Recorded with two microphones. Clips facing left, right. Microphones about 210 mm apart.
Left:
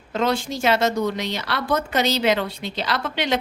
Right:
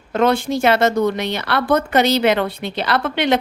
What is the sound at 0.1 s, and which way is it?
Speech, 55° right (ahead or behind).